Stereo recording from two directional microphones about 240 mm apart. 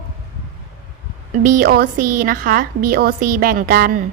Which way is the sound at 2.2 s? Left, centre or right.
Right.